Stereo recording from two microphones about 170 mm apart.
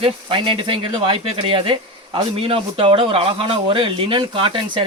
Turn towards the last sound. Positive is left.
turn(degrees=-30)  # may be behind; listen again after turning